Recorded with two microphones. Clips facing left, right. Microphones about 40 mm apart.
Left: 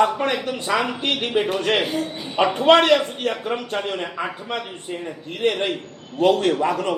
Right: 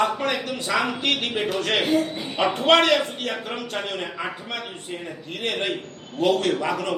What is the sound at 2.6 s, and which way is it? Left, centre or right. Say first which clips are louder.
Speech: left 3 dB; left.